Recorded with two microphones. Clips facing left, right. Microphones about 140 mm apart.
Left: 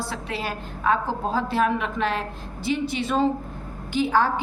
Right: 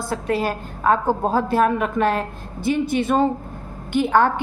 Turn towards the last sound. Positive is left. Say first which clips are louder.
# right 4 dB
turn(degrees=-55)  # may be behind; listen again after turning